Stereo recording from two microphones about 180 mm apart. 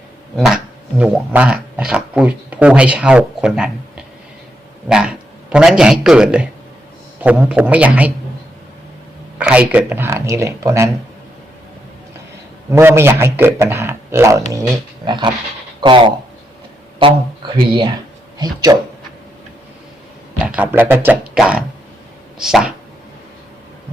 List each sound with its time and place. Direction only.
0.3 s a sound: 5° right (ahead or behind)
4.9 s a man's voice: 5° right (ahead or behind)
9.4 s a man's voice: 5° right (ahead or behind)
12.7 s a man's voice: 15° right (ahead or behind)
20.6 s a man's voice: 10° right (ahead or behind)